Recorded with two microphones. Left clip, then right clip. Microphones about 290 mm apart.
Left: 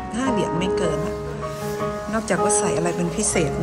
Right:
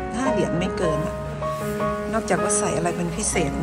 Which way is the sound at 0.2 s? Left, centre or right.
Centre.